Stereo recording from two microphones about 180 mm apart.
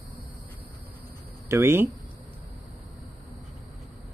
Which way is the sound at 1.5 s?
15° right (ahead or behind).